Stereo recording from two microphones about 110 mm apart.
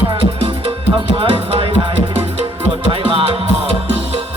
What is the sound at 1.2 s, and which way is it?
Music, 50° right (ahead or behind).